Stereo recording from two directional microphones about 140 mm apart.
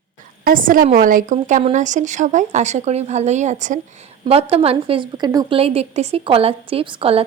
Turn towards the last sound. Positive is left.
turn(degrees=-40)  # may be behind; listen again after turning